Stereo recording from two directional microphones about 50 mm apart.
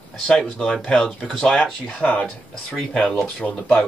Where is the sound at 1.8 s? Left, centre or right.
Left.